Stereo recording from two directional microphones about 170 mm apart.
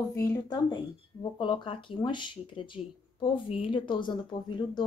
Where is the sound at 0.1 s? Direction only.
20° left (ahead or behind).